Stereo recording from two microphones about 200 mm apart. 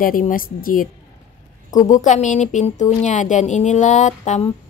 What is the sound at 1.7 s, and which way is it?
Speech, 15° left (ahead or behind).